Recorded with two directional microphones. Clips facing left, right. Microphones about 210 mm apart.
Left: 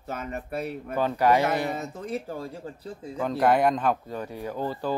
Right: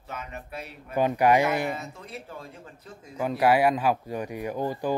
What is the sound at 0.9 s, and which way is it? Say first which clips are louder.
Speech: right 1 dB; 15° right (ahead or behind).